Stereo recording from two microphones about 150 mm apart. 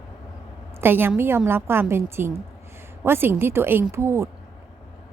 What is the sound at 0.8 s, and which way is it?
A woman's voice, 15° right (ahead or behind).